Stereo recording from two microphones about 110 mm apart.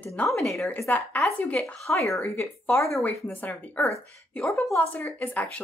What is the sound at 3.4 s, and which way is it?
Speech, 15° left (ahead or behind).